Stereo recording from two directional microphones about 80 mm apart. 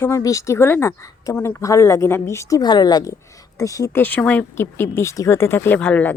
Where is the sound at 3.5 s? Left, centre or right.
Left.